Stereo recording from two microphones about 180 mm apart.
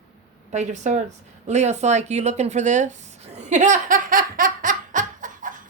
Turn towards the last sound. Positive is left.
turn(degrees=-45)  # may be behind; listen again after turning